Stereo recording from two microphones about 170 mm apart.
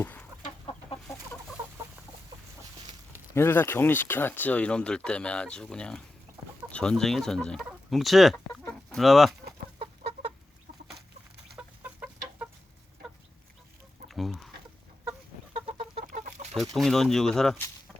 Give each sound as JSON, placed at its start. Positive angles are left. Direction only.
{"t": 0.0, "sound": "chicken", "side_deg": 10}
{"t": 3.3, "sound": "speech", "side_deg": 15}
{"t": 9.7, "sound": "chicken", "side_deg": -40}
{"t": 11.5, "sound": "chicken", "side_deg": -10}
{"t": 14.1, "sound": "chicken", "side_deg": 0}
{"t": 15.5, "sound": "chicken", "side_deg": -35}
{"t": 16.1, "sound": "chicken", "side_deg": -45}
{"t": 16.7, "sound": "speech", "side_deg": 0}